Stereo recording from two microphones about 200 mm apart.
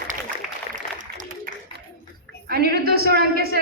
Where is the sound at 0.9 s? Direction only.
40° right (ahead or behind).